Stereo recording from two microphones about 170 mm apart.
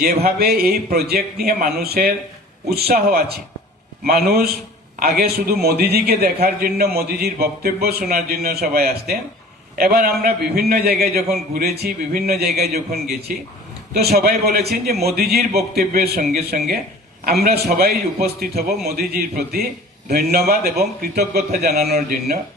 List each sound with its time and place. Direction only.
0.0 s a man's voice: 65° right (ahead or behind)